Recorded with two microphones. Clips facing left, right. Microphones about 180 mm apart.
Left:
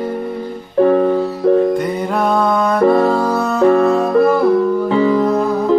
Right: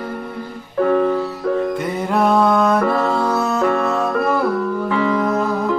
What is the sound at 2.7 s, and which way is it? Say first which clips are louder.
Music: left 6 dB; 30° left (ahead or behind).